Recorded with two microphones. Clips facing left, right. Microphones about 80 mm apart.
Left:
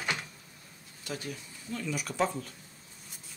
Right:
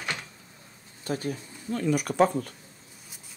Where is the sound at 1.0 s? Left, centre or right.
Right.